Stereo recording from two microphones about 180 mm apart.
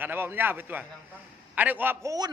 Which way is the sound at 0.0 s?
10° right (ahead or behind).